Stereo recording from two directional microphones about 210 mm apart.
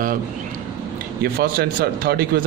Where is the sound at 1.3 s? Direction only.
45° right (ahead or behind).